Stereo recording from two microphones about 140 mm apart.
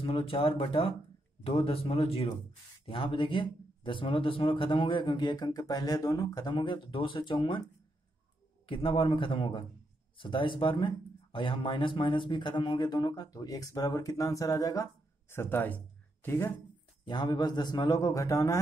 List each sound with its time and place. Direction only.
0.0 s a man's voice: 40° left (ahead or behind); by 16.6 s 15° left (ahead or behind)
17.0 s a man's voice: 30° left (ahead or behind)